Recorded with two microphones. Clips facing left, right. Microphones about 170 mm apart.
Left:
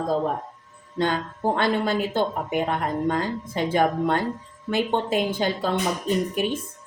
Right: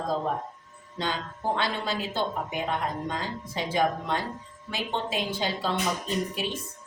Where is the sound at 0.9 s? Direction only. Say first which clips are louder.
Left 7 dB; 50° left (ahead or behind).